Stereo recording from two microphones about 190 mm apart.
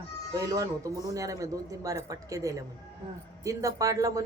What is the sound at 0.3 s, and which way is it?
A man's voice, 20° right (ahead or behind).